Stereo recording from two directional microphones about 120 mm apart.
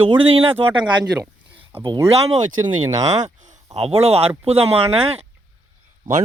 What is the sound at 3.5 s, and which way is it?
Speech, 60° right (ahead or behind).